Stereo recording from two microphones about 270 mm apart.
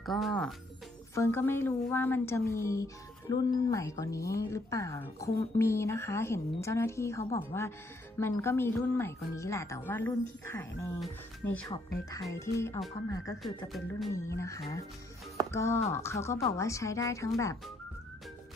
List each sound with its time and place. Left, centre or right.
0.0 s a woman's voice: centre
13.4 s speech: centre
14.1 s a woman's voice: centre